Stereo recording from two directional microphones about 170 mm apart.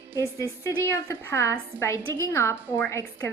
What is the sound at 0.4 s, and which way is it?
Speech, 20° right (ahead or behind).